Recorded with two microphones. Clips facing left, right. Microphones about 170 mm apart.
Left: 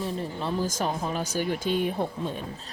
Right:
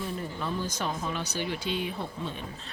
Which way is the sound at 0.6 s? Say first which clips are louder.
Left 4 dB; 40° left (ahead or behind).